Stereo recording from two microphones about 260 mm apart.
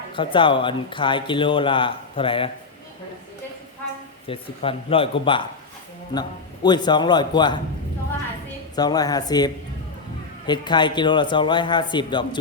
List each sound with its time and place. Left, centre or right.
0.1 s speech: centre
4.3 s a man's voice: left
8.7 s a man's voice: centre